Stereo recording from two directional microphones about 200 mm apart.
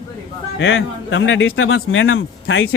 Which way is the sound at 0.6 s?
75° left (ahead or behind).